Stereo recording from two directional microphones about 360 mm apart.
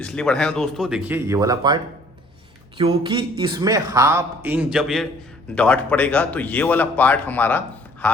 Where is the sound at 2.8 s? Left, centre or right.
Centre.